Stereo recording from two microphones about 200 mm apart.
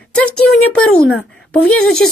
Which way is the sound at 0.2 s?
5° left (ahead or behind).